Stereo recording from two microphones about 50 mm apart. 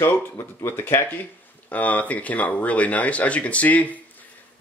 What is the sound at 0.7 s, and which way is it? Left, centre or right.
Speech, left.